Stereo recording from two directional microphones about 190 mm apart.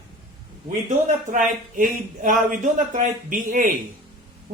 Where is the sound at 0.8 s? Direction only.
40° right (ahead or behind).